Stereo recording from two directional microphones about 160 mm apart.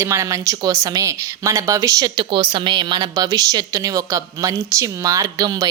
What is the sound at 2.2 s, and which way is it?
Speech, 30° right (ahead or behind).